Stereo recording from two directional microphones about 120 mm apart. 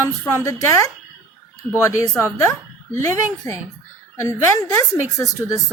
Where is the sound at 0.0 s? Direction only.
25° left (ahead or behind).